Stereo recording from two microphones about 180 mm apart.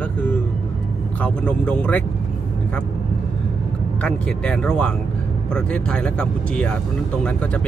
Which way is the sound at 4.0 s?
5° left (ahead or behind).